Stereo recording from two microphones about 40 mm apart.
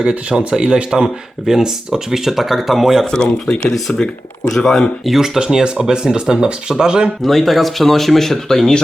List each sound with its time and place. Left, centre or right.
0.0 s speech: right; by 3.1 s centre
3.5 s speech: left
4.5 s speech: centre
5.0 s speech: centre
5.4 s speech: centre
7.2 s speech: centre